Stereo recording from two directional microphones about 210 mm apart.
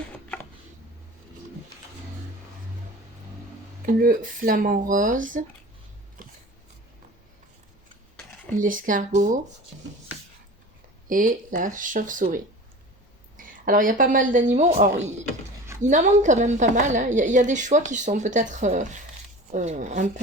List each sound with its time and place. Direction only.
3.8 s a woman's voice: 40° right (ahead or behind)
8.5 s a woman's voice: 40° right (ahead or behind)
11.1 s a woman's voice: 40° right (ahead or behind)